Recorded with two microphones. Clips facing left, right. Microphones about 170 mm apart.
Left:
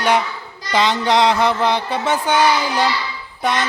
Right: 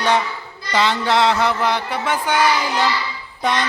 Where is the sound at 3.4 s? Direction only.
5° left (ahead or behind).